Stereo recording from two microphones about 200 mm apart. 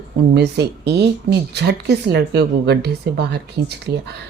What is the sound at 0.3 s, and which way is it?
Speech, 55° right (ahead or behind).